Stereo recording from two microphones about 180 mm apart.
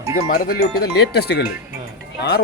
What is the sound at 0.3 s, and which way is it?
Speech, 60° left (ahead or behind).